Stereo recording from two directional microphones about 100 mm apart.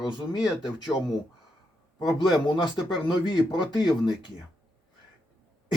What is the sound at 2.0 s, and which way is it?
Speech, 40° left (ahead or behind).